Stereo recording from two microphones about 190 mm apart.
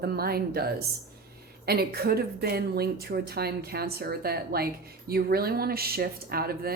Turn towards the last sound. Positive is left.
turn(degrees=-55)  # may be behind; listen again after turning